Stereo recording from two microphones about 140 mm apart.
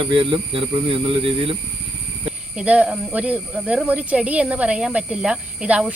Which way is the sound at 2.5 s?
10° right (ahead or behind).